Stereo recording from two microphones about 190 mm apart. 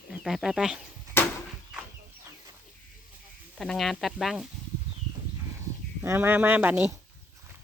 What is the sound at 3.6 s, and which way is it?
Speech, centre (ahead or behind).